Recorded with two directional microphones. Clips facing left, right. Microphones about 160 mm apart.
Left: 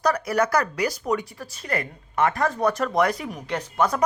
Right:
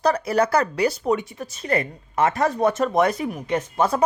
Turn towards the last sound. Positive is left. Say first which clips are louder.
# right 2 dB
turn(degrees=-30)  # may be behind; listen again after turning